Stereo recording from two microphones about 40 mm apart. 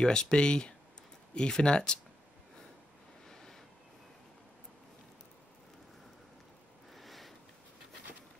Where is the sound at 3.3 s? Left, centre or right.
Centre.